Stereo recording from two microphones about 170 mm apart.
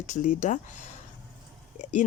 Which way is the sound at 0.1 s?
45° left (ahead or behind).